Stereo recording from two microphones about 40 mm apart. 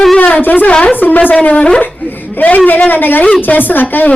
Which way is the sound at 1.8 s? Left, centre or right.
Left.